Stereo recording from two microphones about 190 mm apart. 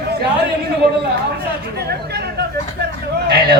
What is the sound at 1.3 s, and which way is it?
Chatter, 55° right (ahead or behind).